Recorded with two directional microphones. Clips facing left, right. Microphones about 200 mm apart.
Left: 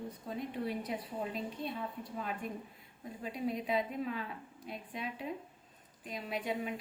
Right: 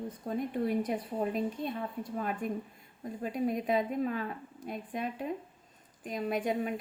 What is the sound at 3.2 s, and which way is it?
A woman's voice, 50° right (ahead or behind).